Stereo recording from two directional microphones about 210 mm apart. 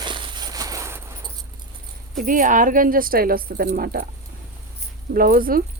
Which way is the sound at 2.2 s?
40° right (ahead or behind).